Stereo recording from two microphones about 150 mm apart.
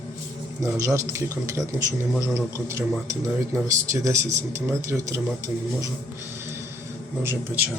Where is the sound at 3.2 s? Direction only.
20° right (ahead or behind).